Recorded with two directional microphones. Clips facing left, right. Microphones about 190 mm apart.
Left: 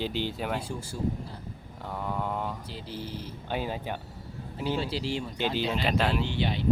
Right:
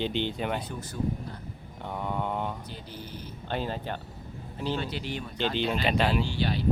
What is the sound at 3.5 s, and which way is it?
Speech, 10° left (ahead or behind).